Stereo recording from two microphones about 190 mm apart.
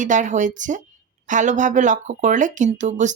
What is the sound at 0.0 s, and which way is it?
Speech, 40° right (ahead or behind).